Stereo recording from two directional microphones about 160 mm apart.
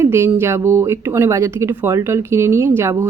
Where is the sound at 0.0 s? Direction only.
20° right (ahead or behind).